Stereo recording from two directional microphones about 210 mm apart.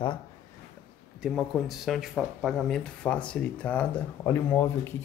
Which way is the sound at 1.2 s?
Centre (ahead or behind).